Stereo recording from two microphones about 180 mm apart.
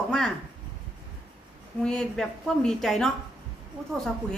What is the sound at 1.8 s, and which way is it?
A woman's voice, 5° left (ahead or behind).